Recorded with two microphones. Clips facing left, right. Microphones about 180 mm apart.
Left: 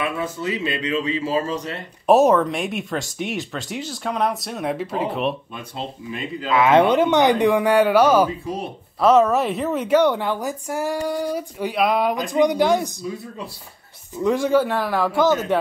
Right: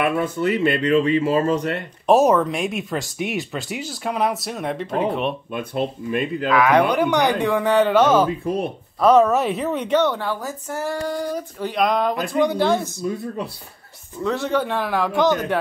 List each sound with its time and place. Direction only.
0.0 s speech: 60° right (ahead or behind)
2.0 s speech: centre (ahead or behind)
5.5 s speech: 55° right (ahead or behind)
6.5 s speech: 25° left (ahead or behind)
14.2 s speech: 10° left (ahead or behind)